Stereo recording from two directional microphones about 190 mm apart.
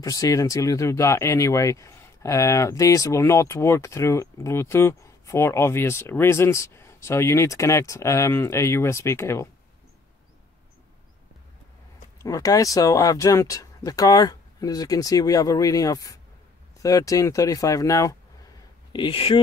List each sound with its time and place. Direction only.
0.0 s speech: 20° left (ahead or behind)
12.2 s speech: 20° left (ahead or behind)